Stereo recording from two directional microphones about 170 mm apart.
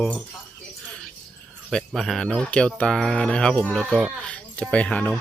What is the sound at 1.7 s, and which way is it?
Speech, centre (ahead or behind).